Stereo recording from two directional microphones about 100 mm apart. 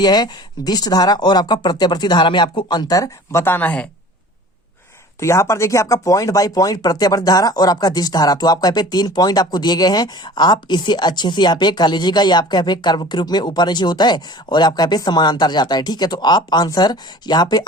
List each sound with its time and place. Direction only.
0.0 s speech: 45° left (ahead or behind)
3.4 s speech: 20° left (ahead or behind)
5.2 s speech: 30° left (ahead or behind)